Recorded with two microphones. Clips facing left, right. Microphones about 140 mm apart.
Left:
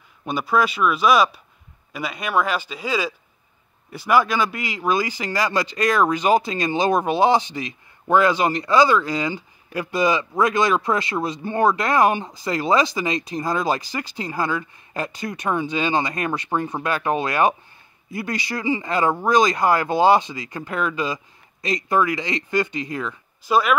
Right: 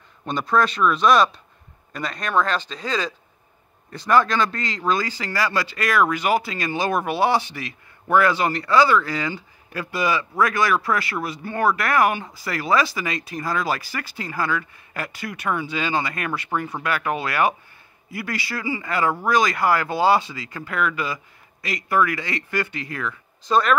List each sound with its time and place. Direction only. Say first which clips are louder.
0.2 s speech: even; 5° left (ahead or behind)
23.4 s speech: even; 5° left (ahead or behind)